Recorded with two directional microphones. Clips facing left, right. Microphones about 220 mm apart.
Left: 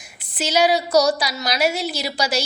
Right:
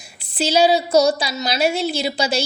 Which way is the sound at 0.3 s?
30° right (ahead or behind).